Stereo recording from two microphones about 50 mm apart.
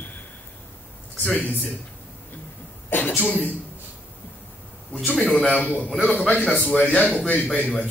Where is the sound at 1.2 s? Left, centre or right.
Left.